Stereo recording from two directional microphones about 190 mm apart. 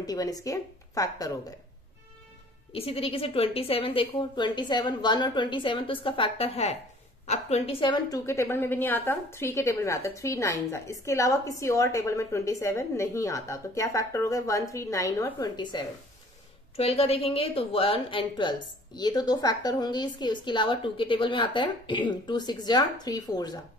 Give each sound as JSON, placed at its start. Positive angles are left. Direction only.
{"t": 0.0, "sound": "a woman's voice", "side_deg": 20}
{"t": 2.7, "sound": "a woman's voice", "side_deg": 30}